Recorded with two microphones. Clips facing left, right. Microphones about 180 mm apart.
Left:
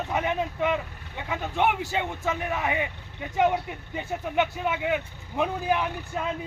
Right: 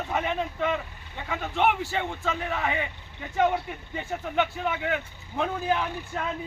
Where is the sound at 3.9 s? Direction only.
15° left (ahead or behind).